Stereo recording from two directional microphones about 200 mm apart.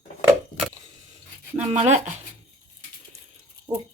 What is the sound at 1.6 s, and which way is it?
Speech, 35° right (ahead or behind).